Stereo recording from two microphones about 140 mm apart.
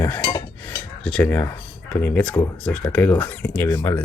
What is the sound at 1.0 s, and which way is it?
Speech, 10° left (ahead or behind).